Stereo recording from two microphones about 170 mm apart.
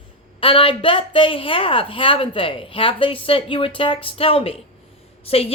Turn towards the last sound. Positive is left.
turn(degrees=35)  # may be behind; listen again after turning